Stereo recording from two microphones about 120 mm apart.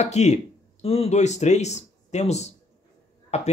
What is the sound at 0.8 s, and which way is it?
Speech, 60° left (ahead or behind).